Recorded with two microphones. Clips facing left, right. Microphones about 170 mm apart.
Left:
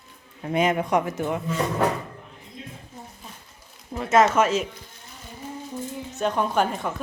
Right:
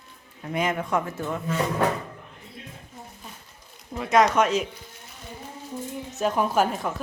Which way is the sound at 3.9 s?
Centre (ahead or behind).